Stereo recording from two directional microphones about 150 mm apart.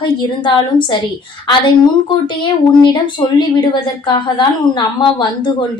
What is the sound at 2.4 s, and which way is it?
A woman's voice, 30° left (ahead or behind).